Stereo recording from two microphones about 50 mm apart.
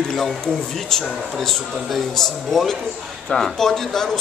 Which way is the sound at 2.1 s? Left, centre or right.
Centre.